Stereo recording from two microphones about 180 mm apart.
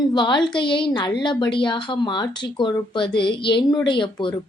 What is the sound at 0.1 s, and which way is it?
A woman's voice, 25° left (ahead or behind).